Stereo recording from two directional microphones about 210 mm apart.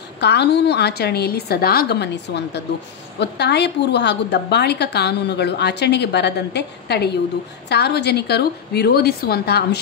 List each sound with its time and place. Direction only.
0.2 s a woman's voice: 55° left (ahead or behind)